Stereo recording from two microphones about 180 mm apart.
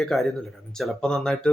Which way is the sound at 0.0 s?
Centre (ahead or behind).